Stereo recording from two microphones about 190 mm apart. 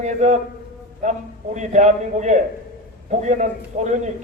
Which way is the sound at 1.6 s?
40° right (ahead or behind).